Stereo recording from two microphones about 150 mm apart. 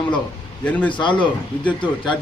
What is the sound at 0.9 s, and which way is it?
Speech, 30° left (ahead or behind).